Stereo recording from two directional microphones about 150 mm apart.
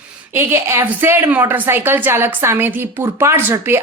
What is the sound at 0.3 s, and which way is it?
Speech, 15° right (ahead or behind).